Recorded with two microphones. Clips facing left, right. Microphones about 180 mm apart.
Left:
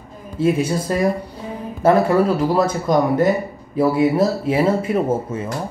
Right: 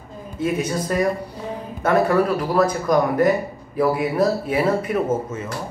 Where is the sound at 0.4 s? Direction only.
30° left (ahead or behind).